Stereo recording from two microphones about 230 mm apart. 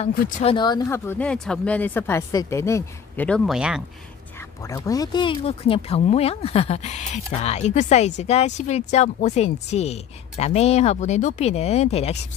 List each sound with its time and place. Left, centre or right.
0.0 s speech: left; by 3.8 s centre
4.6 s speech: centre